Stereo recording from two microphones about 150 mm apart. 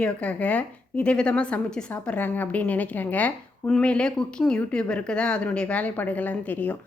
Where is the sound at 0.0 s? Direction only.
10° left (ahead or behind).